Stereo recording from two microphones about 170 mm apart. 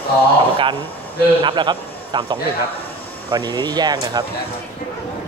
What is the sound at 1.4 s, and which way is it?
A man's voice, 25° right (ahead or behind).